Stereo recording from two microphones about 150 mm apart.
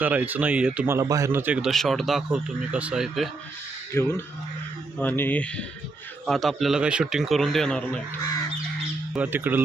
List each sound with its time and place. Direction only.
0.0 s speech: 10° right (ahead or behind)
3.9 s a man's voice: 15° left (ahead or behind)
9.1 s speech: 10° right (ahead or behind)